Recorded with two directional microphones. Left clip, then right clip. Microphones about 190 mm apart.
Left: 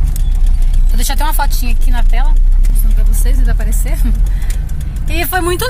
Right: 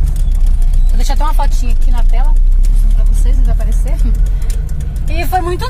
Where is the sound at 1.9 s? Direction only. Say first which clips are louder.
Left 2 dB; 20° left (ahead or behind).